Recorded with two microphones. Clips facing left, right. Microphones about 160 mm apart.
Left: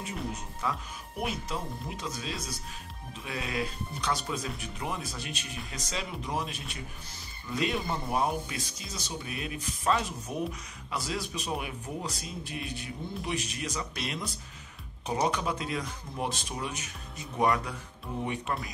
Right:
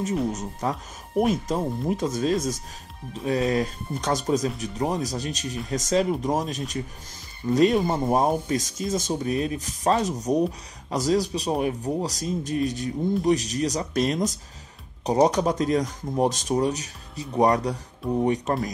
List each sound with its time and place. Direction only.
0.3 s speech: 40° right (ahead or behind)